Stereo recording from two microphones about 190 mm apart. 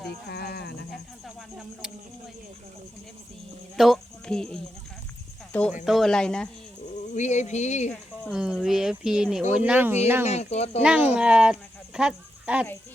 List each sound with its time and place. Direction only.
0.3 s speech: 55° left (ahead or behind)
3.8 s speech: centre (ahead or behind)
5.8 s speech: centre (ahead or behind)
7.1 s speech: 40° left (ahead or behind)
8.2 s speech: 5° right (ahead or behind)
10.2 s speech: 35° left (ahead or behind)
10.8 s speech: 5° right (ahead or behind)
11.9 s a sound: 5° right (ahead or behind)